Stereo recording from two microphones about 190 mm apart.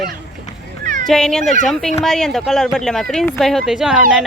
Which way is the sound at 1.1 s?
Centre (ahead or behind).